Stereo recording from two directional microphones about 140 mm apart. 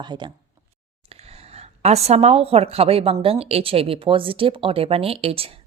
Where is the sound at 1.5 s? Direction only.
50° right (ahead or behind).